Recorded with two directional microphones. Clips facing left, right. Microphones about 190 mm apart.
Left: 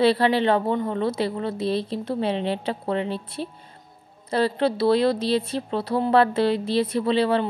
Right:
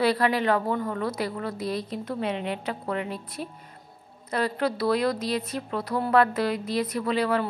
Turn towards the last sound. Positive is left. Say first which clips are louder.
# left 4 dB
turn(degrees=30)  # may be behind; listen again after turning